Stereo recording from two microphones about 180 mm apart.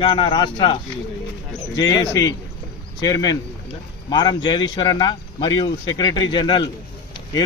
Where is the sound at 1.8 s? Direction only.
20° left (ahead or behind).